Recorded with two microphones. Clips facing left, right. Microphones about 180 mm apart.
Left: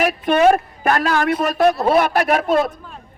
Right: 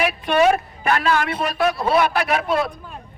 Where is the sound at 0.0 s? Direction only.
45° left (ahead or behind).